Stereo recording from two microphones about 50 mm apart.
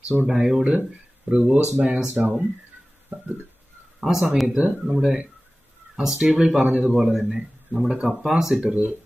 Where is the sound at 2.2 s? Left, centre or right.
Centre.